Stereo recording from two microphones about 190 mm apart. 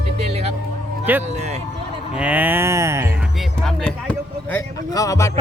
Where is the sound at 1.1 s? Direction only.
10° right (ahead or behind).